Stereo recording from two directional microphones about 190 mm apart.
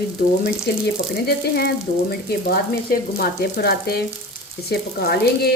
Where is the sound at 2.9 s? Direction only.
55° left (ahead or behind).